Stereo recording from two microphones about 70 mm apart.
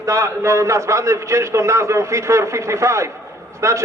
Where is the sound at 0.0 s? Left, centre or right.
Right.